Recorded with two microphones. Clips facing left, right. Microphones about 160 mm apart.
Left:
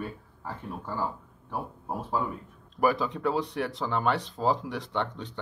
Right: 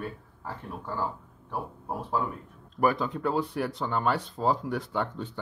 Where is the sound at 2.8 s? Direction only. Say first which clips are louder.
Even; centre (ahead or behind).